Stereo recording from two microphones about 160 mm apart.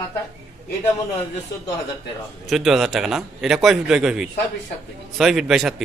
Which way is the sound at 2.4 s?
Centre (ahead or behind).